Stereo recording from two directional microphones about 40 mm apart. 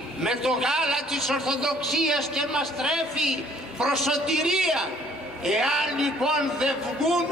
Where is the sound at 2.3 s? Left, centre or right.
Centre.